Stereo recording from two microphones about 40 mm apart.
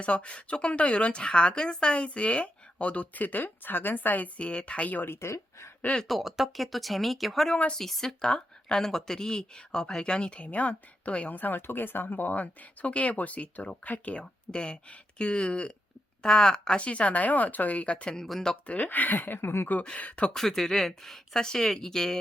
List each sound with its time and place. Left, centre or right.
0.0 s a woman's voice: left
3.4 s a woman's voice: left
4.4 s speech: left
5.2 s speech: left
6.1 s speech: centre
8.2 s speech: centre
8.8 s a woman's voice: centre; by 11.3 s left
11.3 s a woman's voice: left; by 16.8 s centre
16.8 s speech: left
18.5 s speech: centre
18.8 s speech: left
19.4 s speech: left
20.0 s speech: left
20.3 s speech: centre